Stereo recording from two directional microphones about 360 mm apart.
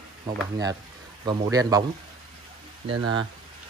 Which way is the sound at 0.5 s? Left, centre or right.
Centre.